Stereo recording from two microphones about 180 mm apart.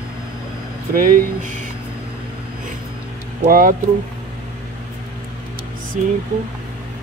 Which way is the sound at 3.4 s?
50° right (ahead or behind).